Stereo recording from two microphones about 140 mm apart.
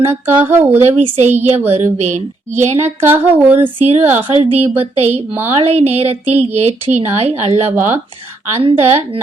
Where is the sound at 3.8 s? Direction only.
50° right (ahead or behind).